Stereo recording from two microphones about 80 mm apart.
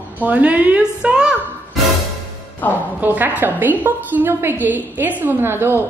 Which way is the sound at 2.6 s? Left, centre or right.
Left.